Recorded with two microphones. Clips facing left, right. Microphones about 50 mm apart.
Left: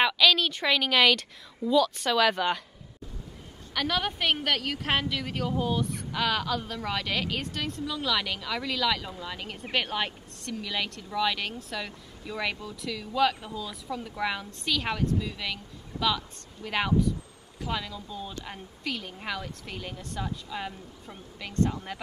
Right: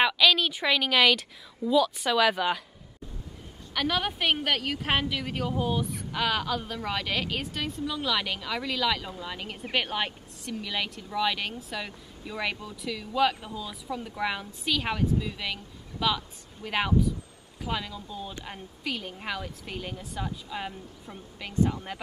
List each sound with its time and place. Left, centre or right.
0.0 s a woman's voice: centre
3.7 s a woman's voice: centre